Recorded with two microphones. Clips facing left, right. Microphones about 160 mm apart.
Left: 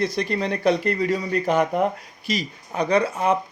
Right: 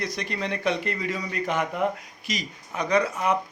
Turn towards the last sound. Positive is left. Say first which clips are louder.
# left 3 dB
turn(degrees=30)  # may be behind; listen again after turning